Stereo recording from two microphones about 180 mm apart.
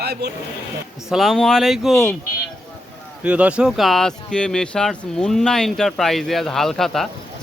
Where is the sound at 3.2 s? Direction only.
5° right (ahead or behind).